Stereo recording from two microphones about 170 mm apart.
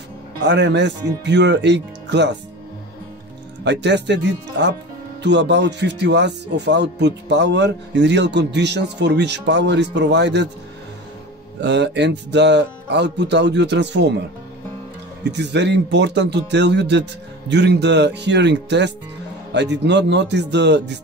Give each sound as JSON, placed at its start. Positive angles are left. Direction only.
{"t": 0.4, "sound": "speech", "side_deg": -90}
{"t": 3.6, "sound": "speech", "side_deg": -90}
{"t": 11.6, "sound": "speech", "side_deg": -90}
{"t": 15.2, "sound": "speech", "side_deg": -90}